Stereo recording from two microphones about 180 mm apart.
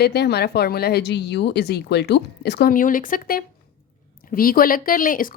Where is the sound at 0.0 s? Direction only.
65° left (ahead or behind).